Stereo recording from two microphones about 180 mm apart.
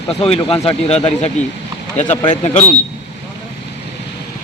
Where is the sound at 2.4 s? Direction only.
35° left (ahead or behind).